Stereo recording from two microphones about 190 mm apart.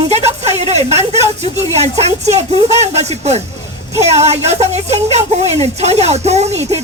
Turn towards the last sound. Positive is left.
turn(degrees=-35)  # may be behind; listen again after turning